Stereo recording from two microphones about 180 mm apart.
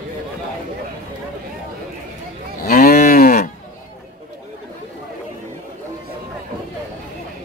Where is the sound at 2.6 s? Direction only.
55° left (ahead or behind).